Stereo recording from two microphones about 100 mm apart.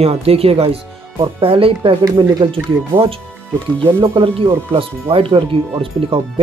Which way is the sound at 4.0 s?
60° right (ahead or behind).